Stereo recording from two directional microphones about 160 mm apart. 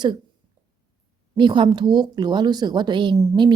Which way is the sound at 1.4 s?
30° right (ahead or behind).